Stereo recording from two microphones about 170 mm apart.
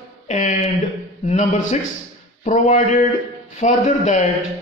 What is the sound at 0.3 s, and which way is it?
A man's voice, 45° left (ahead or behind).